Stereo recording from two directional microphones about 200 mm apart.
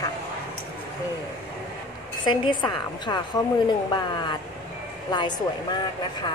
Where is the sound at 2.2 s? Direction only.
25° left (ahead or behind).